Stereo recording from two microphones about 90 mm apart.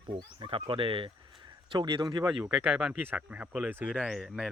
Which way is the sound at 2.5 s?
15° right (ahead or behind).